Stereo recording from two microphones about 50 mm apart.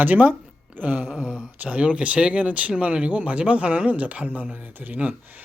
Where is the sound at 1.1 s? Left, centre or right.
Centre.